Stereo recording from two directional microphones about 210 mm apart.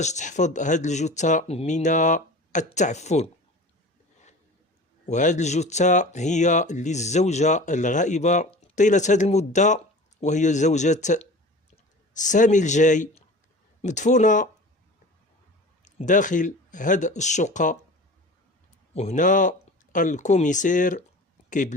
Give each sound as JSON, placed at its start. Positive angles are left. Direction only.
{"t": 0.0, "sound": "speech", "side_deg": 35}
{"t": 5.0, "sound": "speech", "side_deg": 35}
{"t": 15.8, "sound": "speech", "side_deg": 35}
{"t": 18.9, "sound": "speech", "side_deg": 35}